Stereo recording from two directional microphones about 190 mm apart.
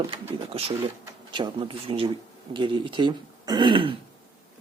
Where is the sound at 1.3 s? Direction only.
25° right (ahead or behind).